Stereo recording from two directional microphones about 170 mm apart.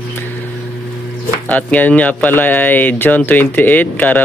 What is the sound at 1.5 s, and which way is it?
Speech, 10° left (ahead or behind).